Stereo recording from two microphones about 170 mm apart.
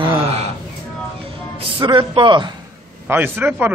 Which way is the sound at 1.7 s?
30° right (ahead or behind).